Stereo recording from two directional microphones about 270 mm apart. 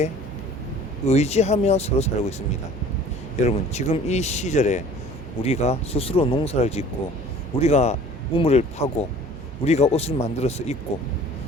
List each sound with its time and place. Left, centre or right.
1.0 s speech: left
3.4 s speech: left